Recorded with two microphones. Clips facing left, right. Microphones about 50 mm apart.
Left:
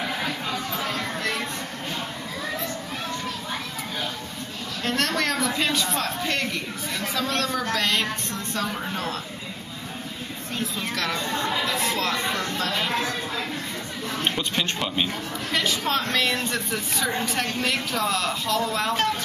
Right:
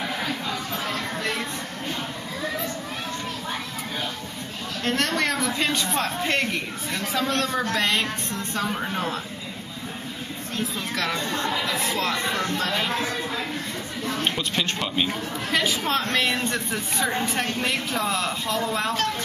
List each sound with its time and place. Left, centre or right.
0.0 s music: centre
0.9 s a sound: centre
4.8 s speech: centre
5.9 s speech: centre
11.2 s speech: left
11.5 s speech: centre
12.3 s speech: right
14.2 s speech: centre
15.5 s speech: centre